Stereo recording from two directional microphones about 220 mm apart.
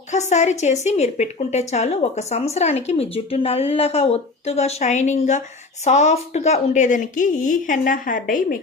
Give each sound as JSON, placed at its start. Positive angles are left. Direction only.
{"t": 0.1, "sound": "a woman's voice", "side_deg": 30}